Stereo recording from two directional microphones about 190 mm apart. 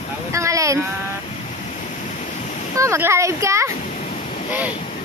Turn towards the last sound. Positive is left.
turn(degrees=-15)  # may be behind; listen again after turning